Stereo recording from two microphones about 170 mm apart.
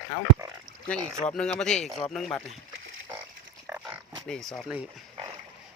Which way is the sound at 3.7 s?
5° right (ahead or behind).